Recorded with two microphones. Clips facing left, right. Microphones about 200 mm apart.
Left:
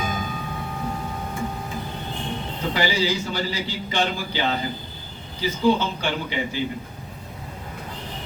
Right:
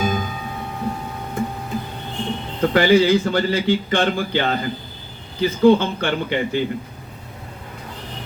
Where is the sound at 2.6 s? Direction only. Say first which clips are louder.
Right 10 dB; 55° right (ahead or behind).